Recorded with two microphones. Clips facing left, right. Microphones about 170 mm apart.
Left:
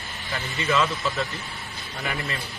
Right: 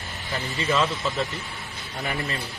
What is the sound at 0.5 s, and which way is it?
Speech, 30° right (ahead or behind).